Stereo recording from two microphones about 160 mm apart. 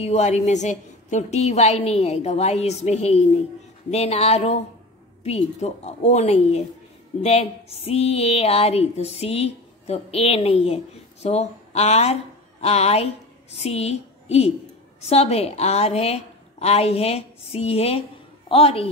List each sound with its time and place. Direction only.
0.0 s a woman's voice: 45° left (ahead or behind)